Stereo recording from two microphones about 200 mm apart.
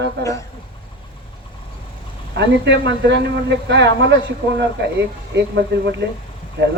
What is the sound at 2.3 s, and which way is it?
A man's voice, 60° right (ahead or behind).